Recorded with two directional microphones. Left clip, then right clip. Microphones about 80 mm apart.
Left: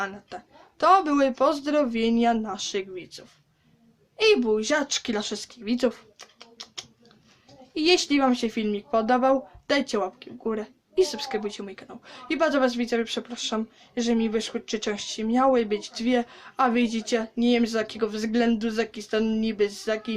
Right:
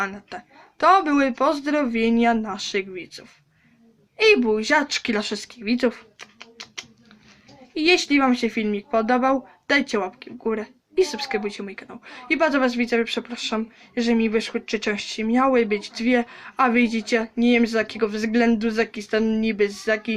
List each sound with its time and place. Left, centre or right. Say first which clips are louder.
0.0 s speech: right 4 dB; centre
2.9 s speech: right 3 dB; left
4.2 s speech: right 3 dB; centre
4.9 s speech: right 4 dB; centre
7.7 s speech: right 3 dB; left